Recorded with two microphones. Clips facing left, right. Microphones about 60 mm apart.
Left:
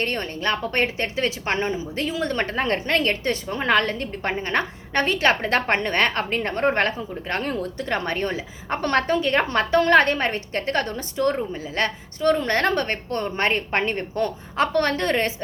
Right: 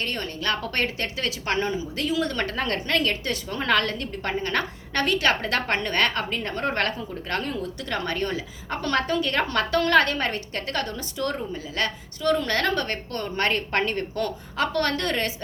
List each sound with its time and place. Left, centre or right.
0.0 s a woman's voice: left
7.5 s a woman's voice: left